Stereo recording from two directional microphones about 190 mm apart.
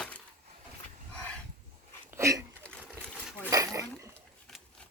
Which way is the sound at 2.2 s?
15° right (ahead or behind).